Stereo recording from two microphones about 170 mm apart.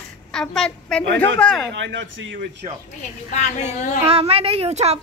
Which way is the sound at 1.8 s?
90° right.